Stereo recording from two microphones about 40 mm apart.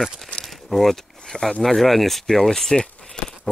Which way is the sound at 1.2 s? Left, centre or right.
Centre.